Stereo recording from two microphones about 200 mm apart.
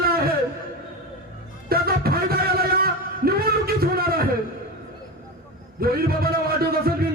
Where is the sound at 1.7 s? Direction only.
50° right (ahead or behind).